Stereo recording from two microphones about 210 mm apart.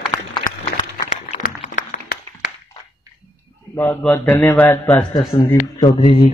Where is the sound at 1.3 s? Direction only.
35° left (ahead or behind).